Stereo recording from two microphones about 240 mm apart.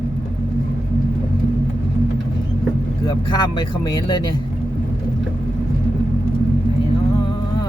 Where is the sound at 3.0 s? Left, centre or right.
Centre.